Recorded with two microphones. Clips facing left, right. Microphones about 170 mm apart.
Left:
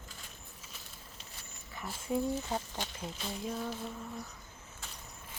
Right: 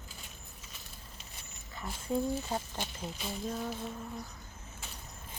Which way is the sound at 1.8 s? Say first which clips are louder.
Right 1 dB; 10° left (ahead or behind).